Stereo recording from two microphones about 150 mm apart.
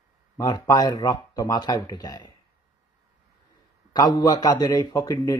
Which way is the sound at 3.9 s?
25° left (ahead or behind).